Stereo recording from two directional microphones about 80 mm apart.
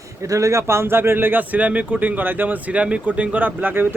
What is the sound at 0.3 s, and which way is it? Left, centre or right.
Speech, right.